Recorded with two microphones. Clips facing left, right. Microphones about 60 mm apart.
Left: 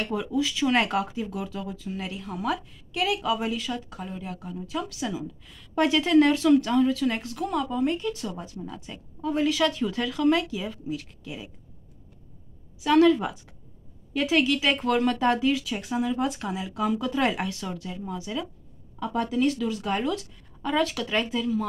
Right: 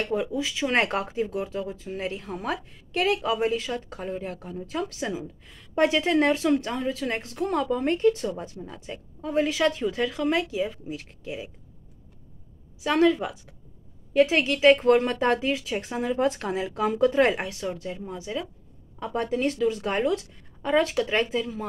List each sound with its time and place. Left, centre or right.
0.0 s speech: right
0.7 s speech: right
12.8 s speech: right